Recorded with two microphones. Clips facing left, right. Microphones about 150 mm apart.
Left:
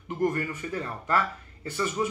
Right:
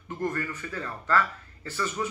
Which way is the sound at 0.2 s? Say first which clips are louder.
Left 4 dB; 20° left (ahead or behind).